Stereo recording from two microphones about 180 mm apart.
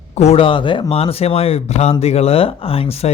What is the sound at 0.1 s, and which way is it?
Speech, 35° left (ahead or behind).